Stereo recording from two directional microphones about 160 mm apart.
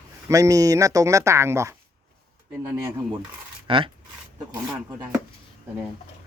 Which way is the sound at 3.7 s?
30° right (ahead or behind).